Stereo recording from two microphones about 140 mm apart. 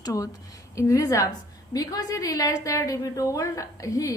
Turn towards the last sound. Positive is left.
turn(degrees=25)  # may be behind; listen again after turning